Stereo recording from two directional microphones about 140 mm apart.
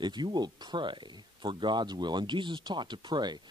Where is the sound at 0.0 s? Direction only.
30° right (ahead or behind).